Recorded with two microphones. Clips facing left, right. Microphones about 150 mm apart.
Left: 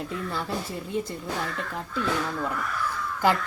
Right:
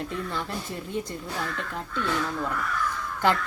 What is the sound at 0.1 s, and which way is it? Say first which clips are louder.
Speech: even; 5° left (ahead or behind).